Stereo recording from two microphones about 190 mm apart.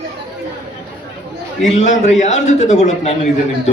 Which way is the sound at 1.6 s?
40° left (ahead or behind).